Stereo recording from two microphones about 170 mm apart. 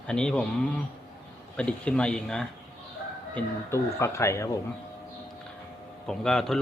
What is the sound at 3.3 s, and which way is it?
Speech, 15° left (ahead or behind).